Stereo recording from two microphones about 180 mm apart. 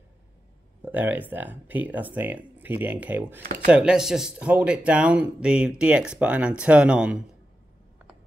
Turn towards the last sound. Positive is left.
turn(degrees=-5)  # may be behind; listen again after turning